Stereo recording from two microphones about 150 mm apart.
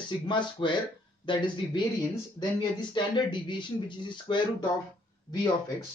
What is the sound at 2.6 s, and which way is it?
Speech, 30° left (ahead or behind).